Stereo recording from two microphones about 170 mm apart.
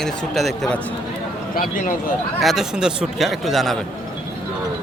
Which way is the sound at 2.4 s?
Centre (ahead or behind).